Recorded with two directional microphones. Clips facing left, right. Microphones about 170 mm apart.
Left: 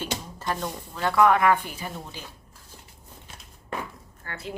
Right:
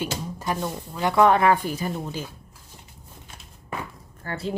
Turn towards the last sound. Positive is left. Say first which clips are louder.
# right 7 dB
turn(degrees=-30)  # may be behind; listen again after turning